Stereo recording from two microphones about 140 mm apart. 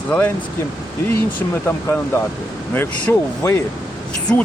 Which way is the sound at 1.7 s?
15° left (ahead or behind).